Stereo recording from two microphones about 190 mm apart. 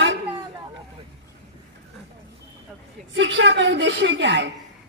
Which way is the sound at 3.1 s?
75° right (ahead or behind).